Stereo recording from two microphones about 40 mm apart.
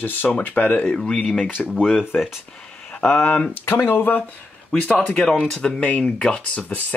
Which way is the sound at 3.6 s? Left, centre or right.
Left.